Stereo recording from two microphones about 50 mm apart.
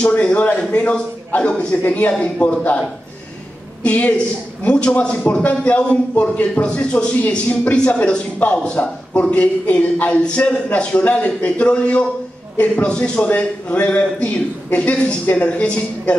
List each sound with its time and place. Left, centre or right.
0.2 s a man's voice: left
3.8 s a man's voice: left
7.2 s speech: left
7.7 s a man's voice: left